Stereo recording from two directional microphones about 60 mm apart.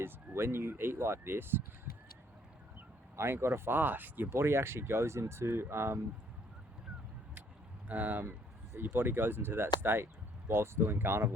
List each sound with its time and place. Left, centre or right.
0.0 s speech: right
3.2 s speech: right
7.9 s speech: right